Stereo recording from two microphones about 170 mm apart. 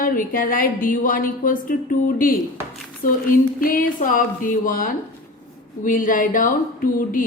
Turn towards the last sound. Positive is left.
turn(degrees=55)  # may be behind; listen again after turning